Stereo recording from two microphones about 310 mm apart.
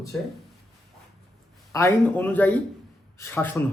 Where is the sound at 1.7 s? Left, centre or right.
Centre.